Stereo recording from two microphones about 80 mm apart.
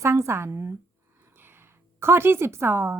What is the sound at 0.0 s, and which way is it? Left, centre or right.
Speech, right.